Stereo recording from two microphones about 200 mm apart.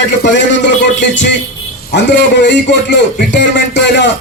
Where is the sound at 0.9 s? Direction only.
60° left (ahead or behind).